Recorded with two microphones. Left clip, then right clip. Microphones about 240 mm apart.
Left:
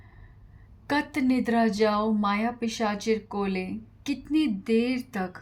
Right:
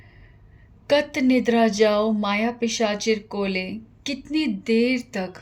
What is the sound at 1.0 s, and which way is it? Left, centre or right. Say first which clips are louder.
Speech: right 6 dB; left.